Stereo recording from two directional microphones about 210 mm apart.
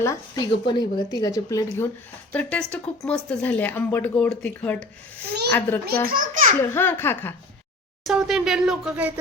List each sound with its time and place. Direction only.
0.0 s speech: 15° left (ahead or behind)
5.8 s speech: 45° right (ahead or behind)
6.6 s speech: 10° left (ahead or behind)
8.0 s speech: centre (ahead or behind)